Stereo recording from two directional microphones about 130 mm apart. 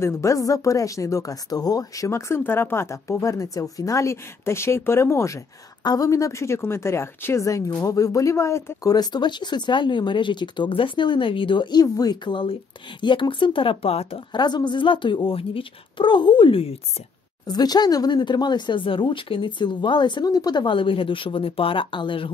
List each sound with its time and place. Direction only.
0.0 s speech: 25° left (ahead or behind)
8.9 s speech: 30° left (ahead or behind); by 14.2 s 50° left (ahead or behind)
14.3 s speech: 35° left (ahead or behind)
17.5 s speech: 30° left (ahead or behind)